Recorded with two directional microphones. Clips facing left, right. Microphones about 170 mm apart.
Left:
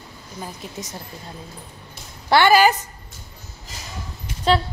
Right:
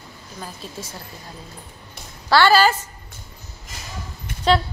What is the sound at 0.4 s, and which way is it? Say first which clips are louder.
Speech: left 1 dB; 20° left (ahead or behind).